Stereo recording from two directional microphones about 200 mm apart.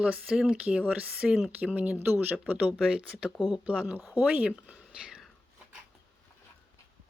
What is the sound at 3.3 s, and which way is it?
Speech, 20° left (ahead or behind).